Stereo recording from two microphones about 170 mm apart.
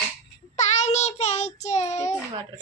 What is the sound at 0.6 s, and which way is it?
Child singing, 45° left (ahead or behind).